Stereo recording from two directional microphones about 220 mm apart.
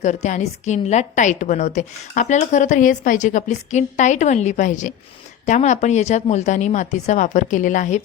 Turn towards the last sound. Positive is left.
turn(degrees=35)  # may be behind; listen again after turning